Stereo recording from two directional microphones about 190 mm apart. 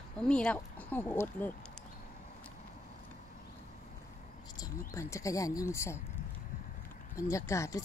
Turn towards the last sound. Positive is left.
turn(degrees=15)  # may be behind; listen again after turning